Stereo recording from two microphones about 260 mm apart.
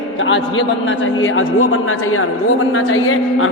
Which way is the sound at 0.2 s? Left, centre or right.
Left.